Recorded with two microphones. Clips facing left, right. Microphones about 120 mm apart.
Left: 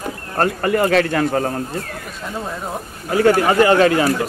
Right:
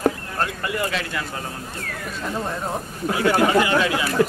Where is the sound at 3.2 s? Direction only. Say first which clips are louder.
Left 5 dB; 50° left (ahead or behind).